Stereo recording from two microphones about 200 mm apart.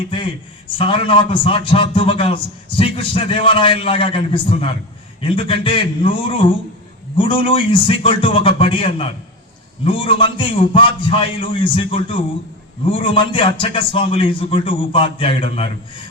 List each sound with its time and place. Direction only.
0.1 s a man's voice: 25° left (ahead or behind)